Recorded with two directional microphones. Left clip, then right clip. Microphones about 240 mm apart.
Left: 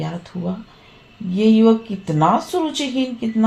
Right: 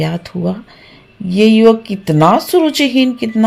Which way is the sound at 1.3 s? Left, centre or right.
Right.